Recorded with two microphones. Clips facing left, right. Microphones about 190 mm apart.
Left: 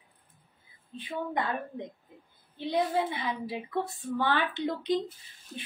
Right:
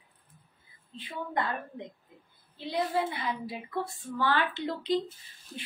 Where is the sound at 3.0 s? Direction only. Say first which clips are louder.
Left 1 dB; 20° left (ahead or behind).